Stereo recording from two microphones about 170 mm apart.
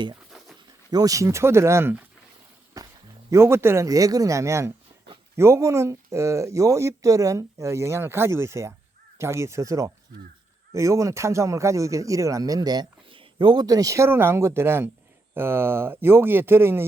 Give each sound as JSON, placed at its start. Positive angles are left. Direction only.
{"t": 0.3, "sound": "dog", "side_deg": 0}
{"t": 0.9, "sound": "speech", "side_deg": -20}
{"t": 2.8, "sound": "a sound", "side_deg": -20}
{"t": 3.2, "sound": "speech", "side_deg": -15}